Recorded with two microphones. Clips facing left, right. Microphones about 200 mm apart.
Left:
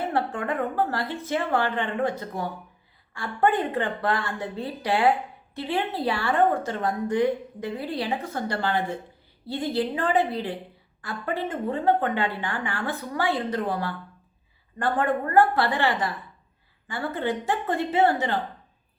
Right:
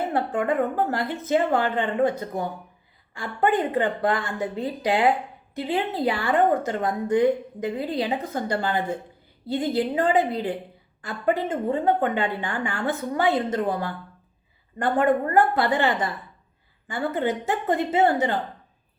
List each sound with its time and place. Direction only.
0.3 s speech: 20° right (ahead or behind)
14.8 s speech: 20° right (ahead or behind)